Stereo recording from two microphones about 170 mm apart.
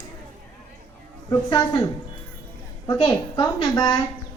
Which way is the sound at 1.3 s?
25° left (ahead or behind).